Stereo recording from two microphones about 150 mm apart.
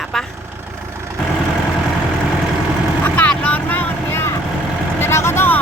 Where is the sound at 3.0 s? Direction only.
10° left (ahead or behind).